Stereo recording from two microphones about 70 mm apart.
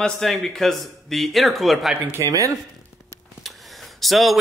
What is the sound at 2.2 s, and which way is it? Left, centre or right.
Speech, right.